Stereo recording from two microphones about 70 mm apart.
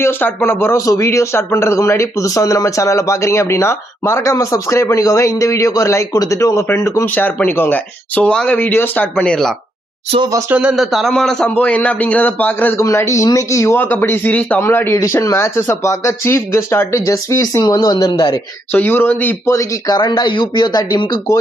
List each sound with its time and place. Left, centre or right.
0.0 s speech: left
0.9 s a man's voice: left
7.0 s a man's voice: left
8.5 s a man's voice: left
10.5 s speech: centre
10.8 s a man's voice: centre
11.4 s a man's voice: left
13.0 s a man's voice: left
13.7 s a man's voice: left
14.6 s speech: left
15.0 s a man's voice: left
17.6 s speech: left
18.7 s a man's voice: left
19.9 s speech: left